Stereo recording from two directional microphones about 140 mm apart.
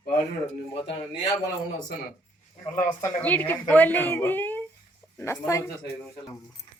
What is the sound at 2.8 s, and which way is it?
Speech, 15° left (ahead or behind).